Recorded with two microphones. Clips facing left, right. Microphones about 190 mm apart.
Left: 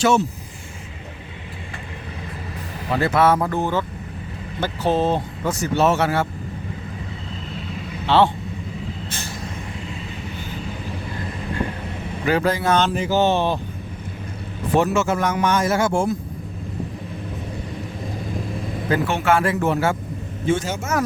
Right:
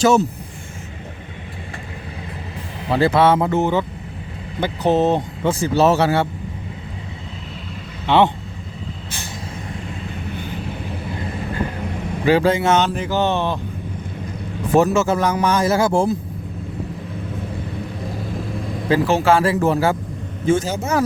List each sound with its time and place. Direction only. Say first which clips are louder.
3.0 s speech: right 3 dB; 30° right (ahead or behind)
8.0 s speech: right 1 dB; 15° right (ahead or behind)
12.2 s speech: right 4 dB; 30° right (ahead or behind)
12.9 s speech: left 1 dB; 5° left (ahead or behind)
14.8 s speech: right 3 dB; 40° right (ahead or behind)
18.9 s speech: right 4 dB; 30° right (ahead or behind)